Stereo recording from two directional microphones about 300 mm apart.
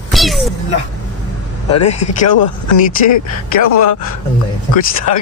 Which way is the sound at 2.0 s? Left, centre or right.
Left.